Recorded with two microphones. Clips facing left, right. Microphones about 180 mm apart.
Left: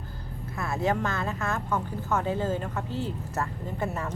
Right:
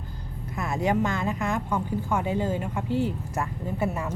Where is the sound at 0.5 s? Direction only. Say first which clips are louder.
Right 2 dB; 15° right (ahead or behind).